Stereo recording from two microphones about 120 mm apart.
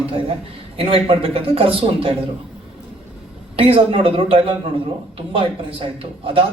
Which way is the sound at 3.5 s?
50° right (ahead or behind).